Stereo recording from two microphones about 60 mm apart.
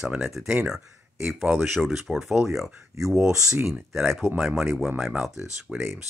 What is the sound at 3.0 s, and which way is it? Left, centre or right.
Speech, right.